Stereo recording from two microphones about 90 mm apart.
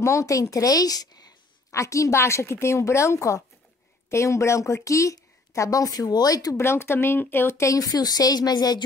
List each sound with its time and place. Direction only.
0.0 s a woman's voice: 35° left (ahead or behind)
6.6 s a woman's voice: 30° left (ahead or behind); by 8.8 s 50° left (ahead or behind)